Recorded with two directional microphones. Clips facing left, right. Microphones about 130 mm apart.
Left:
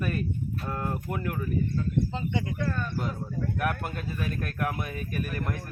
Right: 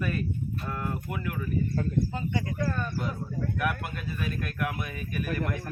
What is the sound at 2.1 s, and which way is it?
Speech, 20° left (ahead or behind).